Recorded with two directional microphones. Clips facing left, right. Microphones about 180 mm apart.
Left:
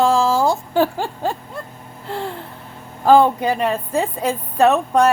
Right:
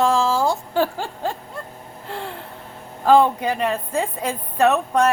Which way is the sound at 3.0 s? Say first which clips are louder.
Left 2 dB; 35° left (ahead or behind).